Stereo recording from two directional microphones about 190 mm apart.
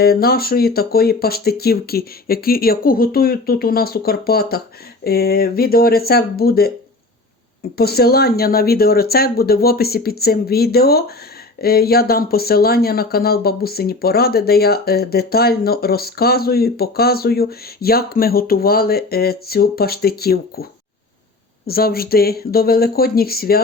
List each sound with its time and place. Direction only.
0.0 s speech: 55° left (ahead or behind)
7.8 s speech: 55° left (ahead or behind)
21.7 s speech: 55° left (ahead or behind)